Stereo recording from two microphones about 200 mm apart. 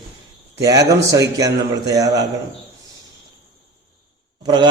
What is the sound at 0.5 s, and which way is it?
A man's voice, 15° right (ahead or behind).